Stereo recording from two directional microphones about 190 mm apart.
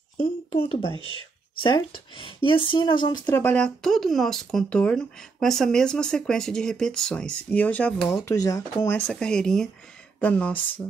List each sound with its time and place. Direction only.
0.2 s a woman's voice: 30° left (ahead or behind)
0.9 s speech: 25° right (ahead or behind)
2.1 s a woman's voice: 25° left (ahead or behind)
3.3 s speech: 10° left (ahead or behind)
8.3 s speech: 15° left (ahead or behind)